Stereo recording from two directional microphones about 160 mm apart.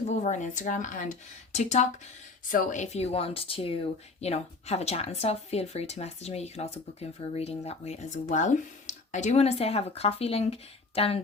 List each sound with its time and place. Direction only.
0.1 s speech: 50° left (ahead or behind)
2.5 s speech: 55° left (ahead or behind); by 11.2 s 35° left (ahead or behind)